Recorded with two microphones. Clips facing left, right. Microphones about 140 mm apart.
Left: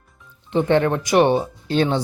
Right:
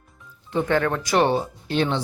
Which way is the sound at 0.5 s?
25° left (ahead or behind).